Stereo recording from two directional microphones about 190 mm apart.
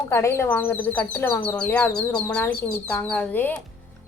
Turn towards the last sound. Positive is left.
turn(degrees=10)  # may be behind; listen again after turning